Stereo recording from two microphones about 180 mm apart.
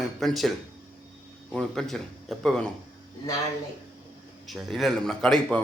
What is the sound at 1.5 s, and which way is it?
A man's voice, centre (ahead or behind).